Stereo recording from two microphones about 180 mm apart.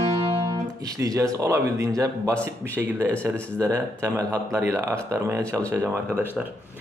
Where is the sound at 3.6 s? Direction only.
15° right (ahead or behind).